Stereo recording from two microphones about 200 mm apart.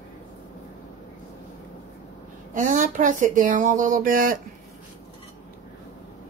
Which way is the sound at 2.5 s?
40° right (ahead or behind).